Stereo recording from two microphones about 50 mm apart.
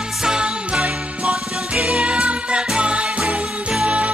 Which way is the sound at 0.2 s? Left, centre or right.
Centre.